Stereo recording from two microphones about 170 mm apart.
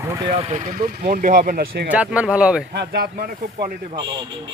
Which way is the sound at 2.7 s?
70° right (ahead or behind).